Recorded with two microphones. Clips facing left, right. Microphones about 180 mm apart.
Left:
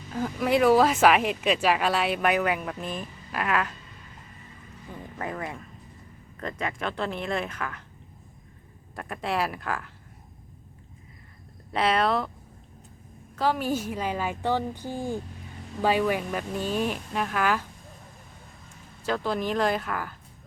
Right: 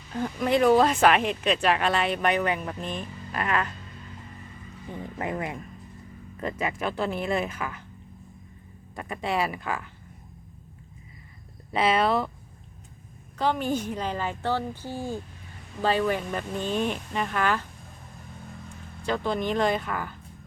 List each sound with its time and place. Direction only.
0.1 s speech: 5° left (ahead or behind)
5.2 s speech: 20° right (ahead or behind)
6.4 s speech: 5° right (ahead or behind)
9.0 s speech: centre (ahead or behind)
11.7 s speech: centre (ahead or behind)
13.3 s a woman's voice: 5° left (ahead or behind)
19.0 s speech: centre (ahead or behind)